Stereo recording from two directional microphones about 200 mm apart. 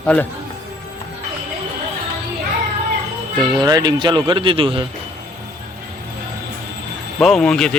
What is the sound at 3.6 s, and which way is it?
Speech, 20° right (ahead or behind).